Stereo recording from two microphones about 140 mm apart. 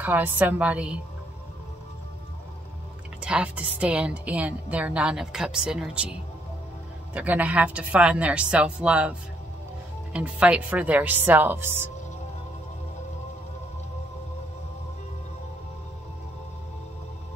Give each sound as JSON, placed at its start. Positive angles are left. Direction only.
{"t": 0.0, "sound": "a woman's voice", "side_deg": -10}
{"t": 3.2, "sound": "a woman's voice", "side_deg": -5}
{"t": 7.2, "sound": "a woman's voice", "side_deg": -10}
{"t": 10.1, "sound": "a woman's voice", "side_deg": -10}